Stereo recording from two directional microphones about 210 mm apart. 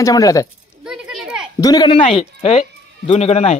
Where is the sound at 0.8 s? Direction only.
Centre (ahead or behind).